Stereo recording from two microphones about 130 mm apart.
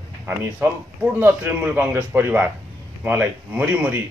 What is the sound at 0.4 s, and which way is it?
A man's voice, 15° right (ahead or behind).